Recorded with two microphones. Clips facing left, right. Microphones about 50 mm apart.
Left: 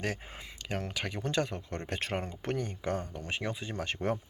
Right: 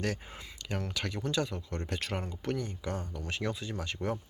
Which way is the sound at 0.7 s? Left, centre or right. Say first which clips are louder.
Even; left.